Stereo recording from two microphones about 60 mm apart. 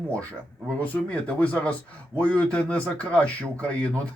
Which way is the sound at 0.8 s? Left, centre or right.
Left.